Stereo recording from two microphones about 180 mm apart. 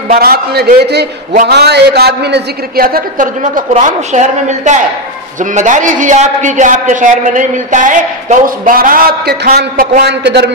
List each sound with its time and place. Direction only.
0.1 s a man's voice: 60° right (ahead or behind)